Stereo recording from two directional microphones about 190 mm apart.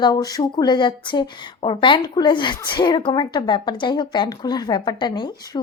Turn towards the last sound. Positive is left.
turn(degrees=25)  # may be behind; listen again after turning